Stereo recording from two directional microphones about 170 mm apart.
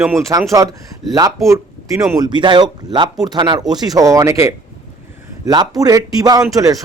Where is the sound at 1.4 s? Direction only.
20° right (ahead or behind).